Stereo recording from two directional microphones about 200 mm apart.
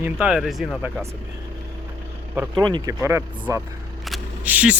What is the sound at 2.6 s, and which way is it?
Speech, 20° right (ahead or behind).